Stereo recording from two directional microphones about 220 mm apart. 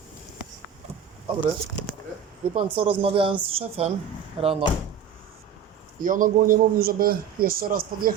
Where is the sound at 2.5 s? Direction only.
25° right (ahead or behind).